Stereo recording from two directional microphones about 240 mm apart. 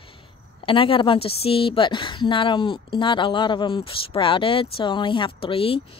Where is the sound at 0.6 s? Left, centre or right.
Left.